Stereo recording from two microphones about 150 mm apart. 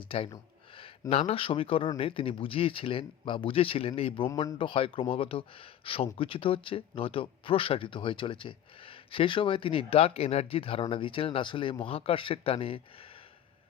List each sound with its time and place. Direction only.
1.1 s speech: 40° left (ahead or behind)